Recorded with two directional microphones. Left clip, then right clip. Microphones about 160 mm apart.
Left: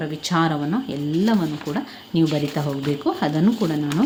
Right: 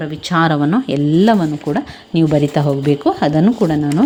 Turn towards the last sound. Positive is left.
turn(degrees=-40)  # may be behind; listen again after turning